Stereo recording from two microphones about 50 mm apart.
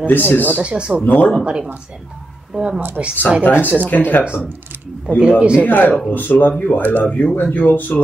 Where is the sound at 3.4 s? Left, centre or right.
Left.